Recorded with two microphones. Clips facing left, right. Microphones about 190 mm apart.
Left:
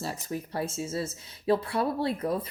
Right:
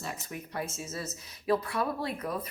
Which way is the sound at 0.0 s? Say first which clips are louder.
Left 5 dB; 35° left (ahead or behind).